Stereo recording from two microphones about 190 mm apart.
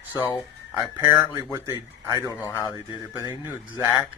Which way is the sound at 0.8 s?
15° right (ahead or behind).